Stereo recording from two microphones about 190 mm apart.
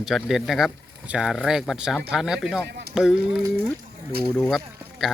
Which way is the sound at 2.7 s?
60° right (ahead or behind).